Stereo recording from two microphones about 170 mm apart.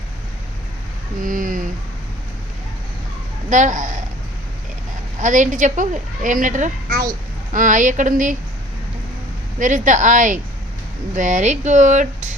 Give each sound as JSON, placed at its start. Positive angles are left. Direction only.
{"t": 1.2, "sound": "speech", "side_deg": -50}
{"t": 3.5, "sound": "a woman's voice", "side_deg": -45}
{"t": 5.2, "sound": "a woman's voice", "side_deg": -45}
{"t": 9.6, "sound": "a woman's voice", "side_deg": -50}